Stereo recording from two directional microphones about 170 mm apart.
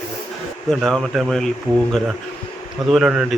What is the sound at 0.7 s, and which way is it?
Speech, centre (ahead or behind).